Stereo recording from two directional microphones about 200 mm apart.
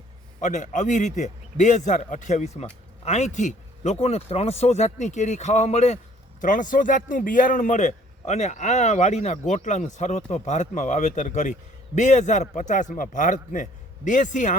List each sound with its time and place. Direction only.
0.4 s a man's voice: 40° left (ahead or behind)